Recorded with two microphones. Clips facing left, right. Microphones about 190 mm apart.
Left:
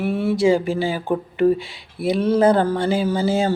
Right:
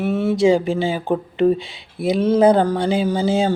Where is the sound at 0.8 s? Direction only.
25° right (ahead or behind).